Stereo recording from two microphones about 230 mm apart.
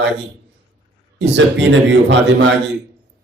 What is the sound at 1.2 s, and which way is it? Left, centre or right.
A man's voice, right.